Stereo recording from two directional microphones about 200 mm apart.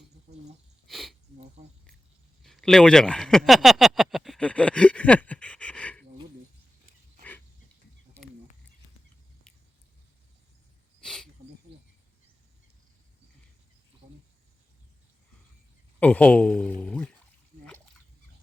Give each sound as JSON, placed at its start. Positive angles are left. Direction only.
{"t": 0.9, "sound": "sneeze", "side_deg": 0}
{"t": 1.6, "sound": "speech", "side_deg": -35}
{"t": 2.4, "sound": "speech", "side_deg": 0}
{"t": 11.0, "sound": "a sound", "side_deg": 5}
{"t": 16.0, "sound": "a man's voice", "side_deg": 5}
{"t": 16.8, "sound": "a sound", "side_deg": 5}